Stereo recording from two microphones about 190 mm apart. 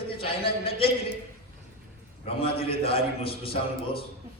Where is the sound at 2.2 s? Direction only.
30° left (ahead or behind).